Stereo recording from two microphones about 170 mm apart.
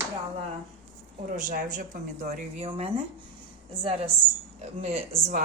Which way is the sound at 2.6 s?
30° right (ahead or behind).